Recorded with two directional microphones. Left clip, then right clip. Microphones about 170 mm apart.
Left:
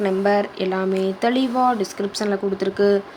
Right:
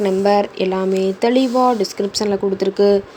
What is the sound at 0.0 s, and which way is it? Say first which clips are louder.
Speech: right 4 dB; 15° right (ahead or behind).